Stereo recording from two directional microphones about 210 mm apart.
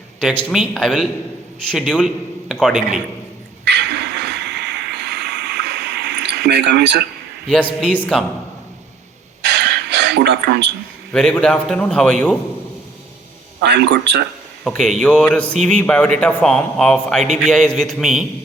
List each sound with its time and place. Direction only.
0.2 s a man's voice: centre (ahead or behind)
3.6 s a sound: 55° right (ahead or behind)
7.5 s a man's voice: 5° left (ahead or behind)
9.4 s a sound: 55° right (ahead or behind)
11.1 s a man's voice: 5° left (ahead or behind)
13.6 s a man's voice: 55° right (ahead or behind)
14.6 s a man's voice: 5° left (ahead or behind)